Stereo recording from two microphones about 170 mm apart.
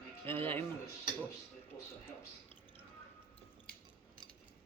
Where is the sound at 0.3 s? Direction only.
10° left (ahead or behind).